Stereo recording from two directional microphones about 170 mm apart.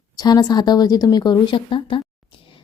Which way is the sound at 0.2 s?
25° left (ahead or behind).